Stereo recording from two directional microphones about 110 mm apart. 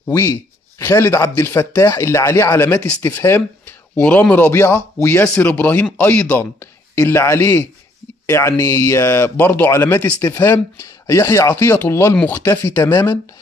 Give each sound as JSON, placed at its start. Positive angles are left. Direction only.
{"t": 0.0, "sound": "speech", "side_deg": 30}